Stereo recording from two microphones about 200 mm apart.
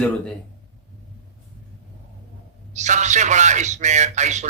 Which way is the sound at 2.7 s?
35° right (ahead or behind).